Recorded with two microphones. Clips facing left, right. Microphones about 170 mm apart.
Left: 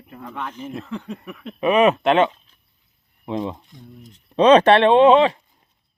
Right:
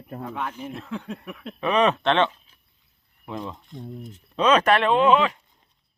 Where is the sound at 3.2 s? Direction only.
20° left (ahead or behind).